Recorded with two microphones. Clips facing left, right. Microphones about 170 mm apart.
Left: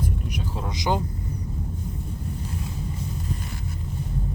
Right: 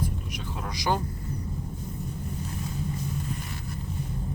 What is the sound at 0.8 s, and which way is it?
Speech, 20° left (ahead or behind).